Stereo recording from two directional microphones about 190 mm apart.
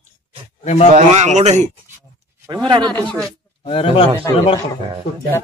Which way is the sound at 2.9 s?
5° left (ahead or behind).